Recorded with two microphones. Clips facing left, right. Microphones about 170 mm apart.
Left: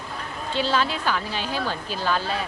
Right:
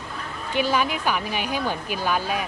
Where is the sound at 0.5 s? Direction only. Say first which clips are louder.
Right 1 dB; 15° right (ahead or behind).